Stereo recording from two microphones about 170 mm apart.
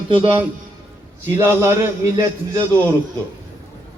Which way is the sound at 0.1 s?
35° right (ahead or behind).